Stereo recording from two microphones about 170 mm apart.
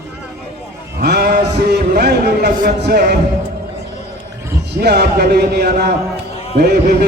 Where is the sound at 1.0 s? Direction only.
70° right (ahead or behind).